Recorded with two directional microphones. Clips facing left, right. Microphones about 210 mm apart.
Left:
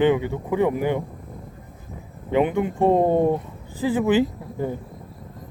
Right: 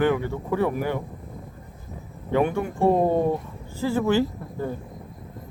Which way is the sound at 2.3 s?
20° left (ahead or behind).